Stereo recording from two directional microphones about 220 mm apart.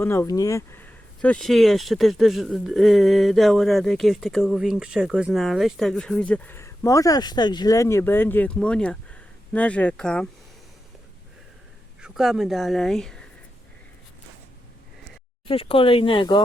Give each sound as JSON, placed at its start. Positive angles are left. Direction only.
{"t": 0.0, "sound": "speech", "side_deg": 10}
{"t": 11.9, "sound": "speech", "side_deg": -5}
{"t": 15.4, "sound": "speech", "side_deg": 25}